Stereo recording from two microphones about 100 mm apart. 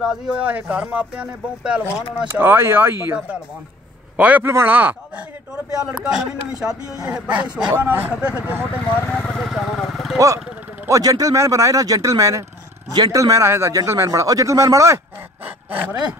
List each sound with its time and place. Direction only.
0.0 s speech: 10° right (ahead or behind)
2.2 s speech: 20° right (ahead or behind)
4.2 s speech: 15° right (ahead or behind)
9.0 s speech: 10° left (ahead or behind)
9.4 s speech: centre (ahead or behind)
10.1 s speech: 35° right (ahead or behind)
10.4 s a sound: 10° right (ahead or behind)
10.9 s speech: 35° right (ahead or behind); by 16.2 s 15° right (ahead or behind)